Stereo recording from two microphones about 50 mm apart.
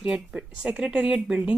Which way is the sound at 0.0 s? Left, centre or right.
Centre.